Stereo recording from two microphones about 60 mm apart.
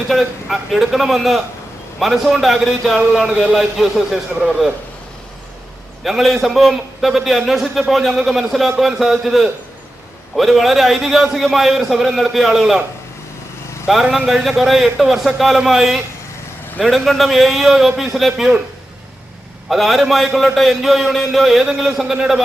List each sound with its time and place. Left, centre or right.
0.1 s a man's voice: centre
6.0 s a man's voice: centre
13.8 s a man's voice: centre
19.6 s a man's voice: centre